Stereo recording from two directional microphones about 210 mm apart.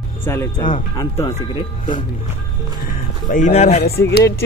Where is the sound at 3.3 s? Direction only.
35° left (ahead or behind).